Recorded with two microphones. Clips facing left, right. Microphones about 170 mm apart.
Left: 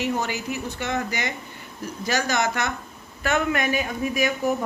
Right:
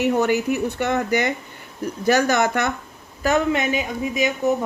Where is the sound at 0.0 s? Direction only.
60° right (ahead or behind).